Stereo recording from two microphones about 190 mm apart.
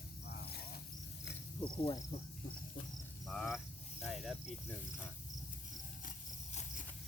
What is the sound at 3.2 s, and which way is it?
Cricket, centre (ahead or behind).